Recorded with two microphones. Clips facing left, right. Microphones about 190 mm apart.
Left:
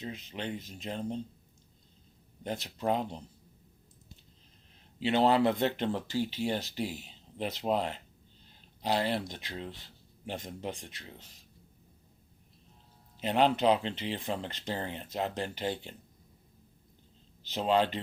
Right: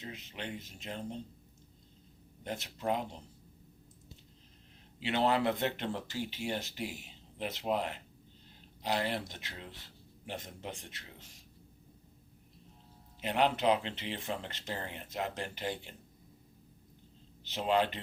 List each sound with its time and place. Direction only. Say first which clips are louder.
0.0 s speech: left 5 dB; 30° left (ahead or behind)
2.4 s speech: left 4 dB; 30° left (ahead or behind)
4.9 s speech: left 5 dB; 30° left (ahead or behind)
13.1 s speech: left 4 dB; 25° left (ahead or behind)
17.5 s speech: left 3 dB; 30° left (ahead or behind)